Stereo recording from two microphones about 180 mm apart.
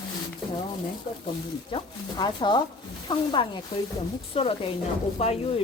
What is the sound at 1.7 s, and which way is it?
A woman's voice, 25° left (ahead or behind).